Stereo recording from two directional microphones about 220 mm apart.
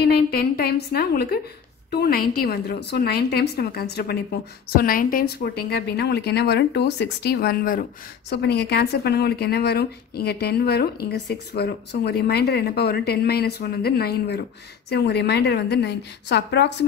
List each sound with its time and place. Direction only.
0.1 s speech: 45° left (ahead or behind)